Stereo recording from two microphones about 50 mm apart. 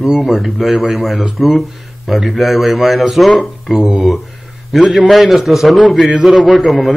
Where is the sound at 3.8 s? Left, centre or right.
Centre.